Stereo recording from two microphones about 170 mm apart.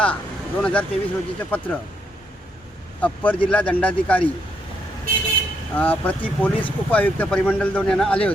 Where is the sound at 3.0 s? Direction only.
10° left (ahead or behind).